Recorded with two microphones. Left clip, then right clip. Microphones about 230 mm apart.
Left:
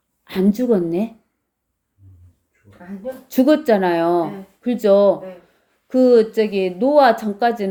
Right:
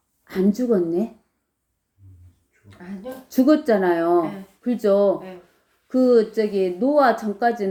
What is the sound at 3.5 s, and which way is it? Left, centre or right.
A woman's voice, left.